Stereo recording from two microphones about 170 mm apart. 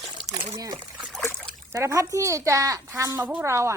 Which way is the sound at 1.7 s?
15° right (ahead or behind).